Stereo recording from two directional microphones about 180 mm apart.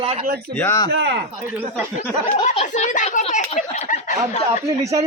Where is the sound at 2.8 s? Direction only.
45° left (ahead or behind).